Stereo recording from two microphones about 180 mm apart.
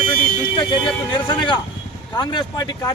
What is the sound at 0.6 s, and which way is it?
A man's voice, 25° left (ahead or behind).